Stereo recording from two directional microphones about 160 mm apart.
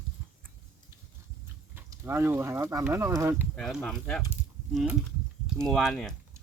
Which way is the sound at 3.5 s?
5° left (ahead or behind).